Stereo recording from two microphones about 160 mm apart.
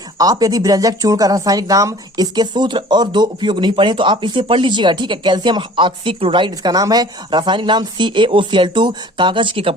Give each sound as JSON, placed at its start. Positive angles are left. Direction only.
{"t": 0.2, "sound": "speech", "side_deg": -25}